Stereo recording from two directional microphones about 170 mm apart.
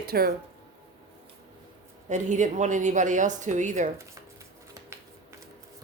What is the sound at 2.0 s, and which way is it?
Speech, 45° right (ahead or behind).